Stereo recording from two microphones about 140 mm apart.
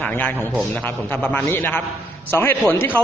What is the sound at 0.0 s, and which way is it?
A man's voice, 10° left (ahead or behind).